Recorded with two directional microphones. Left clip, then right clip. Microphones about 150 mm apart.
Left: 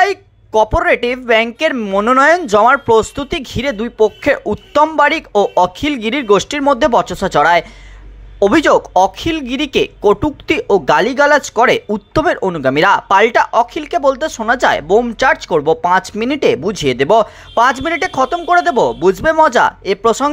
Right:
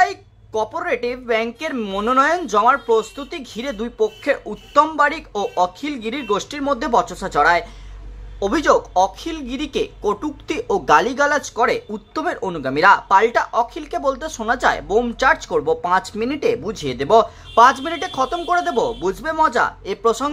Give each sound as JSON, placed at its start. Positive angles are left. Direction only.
{"t": 0.0, "sound": "a woman's voice", "side_deg": 35}
{"t": 1.8, "sound": "speech", "side_deg": 15}
{"t": 2.0, "sound": "speech", "side_deg": 35}
{"t": 4.2, "sound": "speech", "side_deg": 35}